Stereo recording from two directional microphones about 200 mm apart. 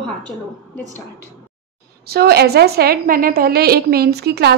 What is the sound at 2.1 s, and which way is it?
A woman's voice, 50° right (ahead or behind).